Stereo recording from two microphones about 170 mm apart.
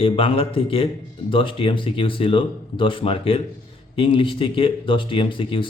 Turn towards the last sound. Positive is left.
turn(degrees=30)  # may be behind; listen again after turning